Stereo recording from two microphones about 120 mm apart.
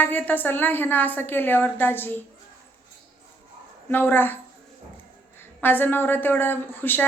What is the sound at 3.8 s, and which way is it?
Speech, 15° left (ahead or behind).